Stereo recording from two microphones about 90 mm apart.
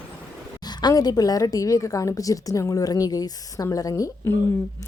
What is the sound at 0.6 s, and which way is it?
A woman's voice, 50° left (ahead or behind).